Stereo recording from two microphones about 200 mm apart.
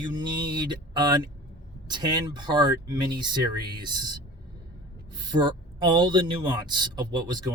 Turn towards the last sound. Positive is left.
turn(degrees=-20)  # may be behind; listen again after turning